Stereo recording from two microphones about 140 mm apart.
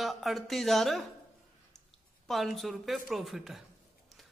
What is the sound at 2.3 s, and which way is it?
Speech, centre (ahead or behind).